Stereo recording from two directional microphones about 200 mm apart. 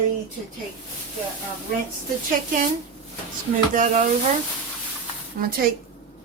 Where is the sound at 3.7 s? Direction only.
40° right (ahead or behind).